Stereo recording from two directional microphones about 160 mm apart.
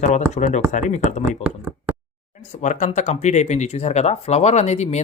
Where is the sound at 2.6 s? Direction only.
50° left (ahead or behind).